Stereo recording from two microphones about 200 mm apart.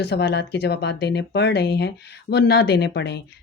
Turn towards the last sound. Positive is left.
turn(degrees=55)  # may be behind; listen again after turning